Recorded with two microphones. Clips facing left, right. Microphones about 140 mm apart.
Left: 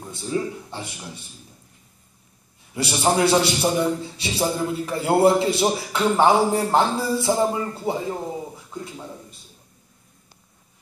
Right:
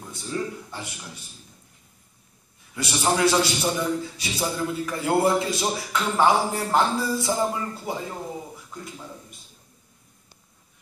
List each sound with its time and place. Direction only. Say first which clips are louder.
0.0 s a man's voice: left 4 dB; 25° left (ahead or behind)
2.7 s a man's voice: left 3 dB; 30° left (ahead or behind)